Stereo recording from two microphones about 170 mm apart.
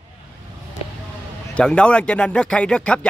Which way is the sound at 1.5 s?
5° left (ahead or behind).